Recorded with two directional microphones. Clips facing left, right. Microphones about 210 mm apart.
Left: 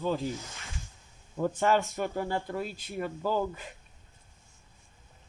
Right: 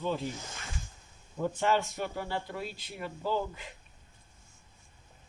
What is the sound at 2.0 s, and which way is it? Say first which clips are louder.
Speech: left 4 dB; 45° left (ahead or behind).